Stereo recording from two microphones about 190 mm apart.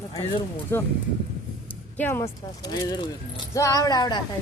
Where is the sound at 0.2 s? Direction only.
25° left (ahead or behind).